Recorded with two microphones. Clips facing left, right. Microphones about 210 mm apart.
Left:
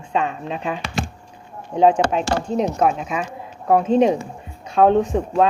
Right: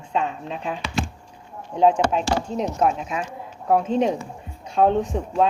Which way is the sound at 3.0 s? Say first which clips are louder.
Left 3 dB; 70° left (ahead or behind).